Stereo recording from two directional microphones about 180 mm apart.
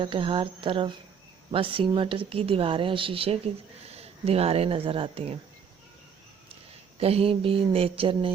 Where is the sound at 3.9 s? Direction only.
35° right (ahead or behind).